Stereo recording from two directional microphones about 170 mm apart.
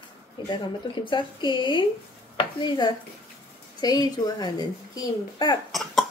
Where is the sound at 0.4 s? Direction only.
25° left (ahead or behind).